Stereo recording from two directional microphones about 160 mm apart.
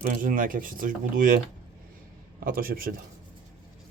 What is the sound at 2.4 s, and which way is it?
Speech, 65° right (ahead or behind).